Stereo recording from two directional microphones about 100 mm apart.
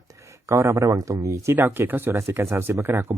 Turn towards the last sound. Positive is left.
turn(degrees=-25)  # may be behind; listen again after turning